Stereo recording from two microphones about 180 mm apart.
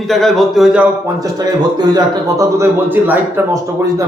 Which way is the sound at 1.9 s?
15° right (ahead or behind).